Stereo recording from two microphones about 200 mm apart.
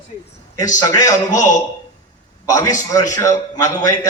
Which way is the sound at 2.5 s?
15° left (ahead or behind).